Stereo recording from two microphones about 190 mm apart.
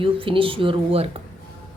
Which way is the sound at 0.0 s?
30° right (ahead or behind).